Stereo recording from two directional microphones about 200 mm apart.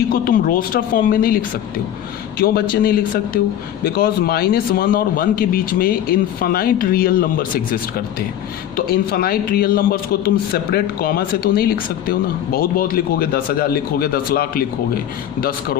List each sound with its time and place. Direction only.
0.1 s a man's voice: 45° left (ahead or behind)